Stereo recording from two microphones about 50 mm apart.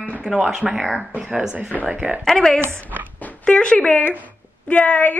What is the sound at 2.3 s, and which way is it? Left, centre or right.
A woman's voice, centre.